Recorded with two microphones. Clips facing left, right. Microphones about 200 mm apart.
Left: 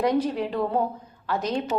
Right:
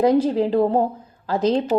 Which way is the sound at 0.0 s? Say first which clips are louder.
Right 6 dB; 30° right (ahead or behind).